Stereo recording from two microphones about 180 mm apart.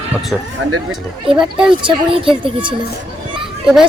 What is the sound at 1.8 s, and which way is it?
Speech, 30° right (ahead or behind).